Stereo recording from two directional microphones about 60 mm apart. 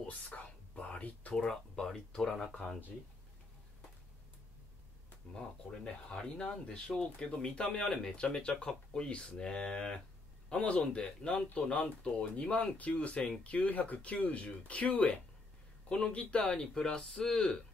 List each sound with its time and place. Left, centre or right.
0.3 s whispering: left
1.3 s speech: centre
6.0 s speech: centre